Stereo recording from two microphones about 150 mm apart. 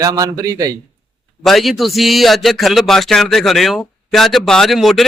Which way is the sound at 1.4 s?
Centre (ahead or behind).